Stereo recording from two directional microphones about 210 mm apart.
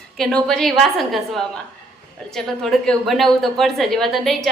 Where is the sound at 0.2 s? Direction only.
Centre (ahead or behind).